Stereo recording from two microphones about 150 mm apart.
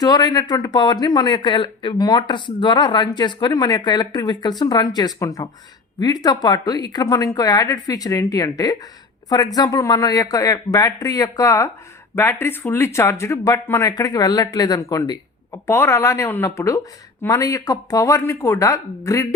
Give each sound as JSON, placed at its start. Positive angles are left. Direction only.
{"t": 0.0, "sound": "speech", "side_deg": 25}